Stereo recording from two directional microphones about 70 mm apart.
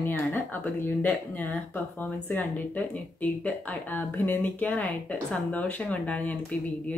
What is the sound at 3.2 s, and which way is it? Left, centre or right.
Speech, left.